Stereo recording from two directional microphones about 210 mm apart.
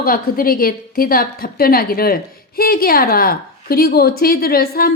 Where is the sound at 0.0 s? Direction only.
45° left (ahead or behind).